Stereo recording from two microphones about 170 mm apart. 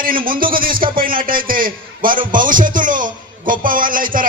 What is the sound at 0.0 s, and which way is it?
A man's voice, 55° right (ahead or behind).